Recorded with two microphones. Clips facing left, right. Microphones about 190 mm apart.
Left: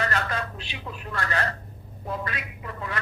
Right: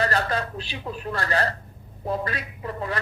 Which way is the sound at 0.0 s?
35° right (ahead or behind).